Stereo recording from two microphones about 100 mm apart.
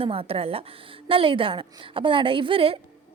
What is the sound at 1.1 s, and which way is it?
A woman's voice, 60° right (ahead or behind).